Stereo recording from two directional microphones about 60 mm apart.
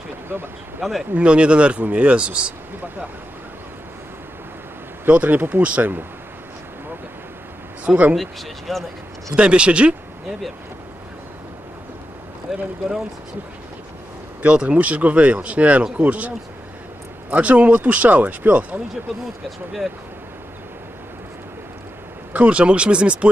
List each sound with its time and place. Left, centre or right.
0.3 s speech: right
0.8 s speech: centre
1.1 s speech: centre
5.1 s speech: right
7.8 s speech: centre
8.2 s speech: centre
9.3 s speech: centre
12.5 s speech: centre
14.4 s speech: centre
22.3 s speech: right